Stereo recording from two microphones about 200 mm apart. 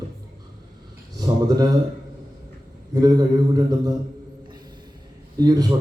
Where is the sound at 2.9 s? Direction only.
20° right (ahead or behind).